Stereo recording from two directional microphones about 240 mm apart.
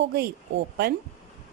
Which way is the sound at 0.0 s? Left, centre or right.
Right.